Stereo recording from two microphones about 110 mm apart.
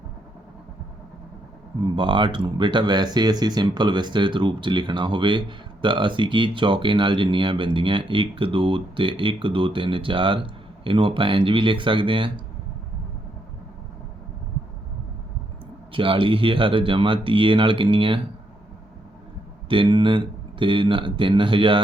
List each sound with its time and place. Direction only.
2.0 s speech: 45° right (ahead or behind)
15.9 s speech: 50° right (ahead or behind)
19.6 s speech: 50° right (ahead or behind)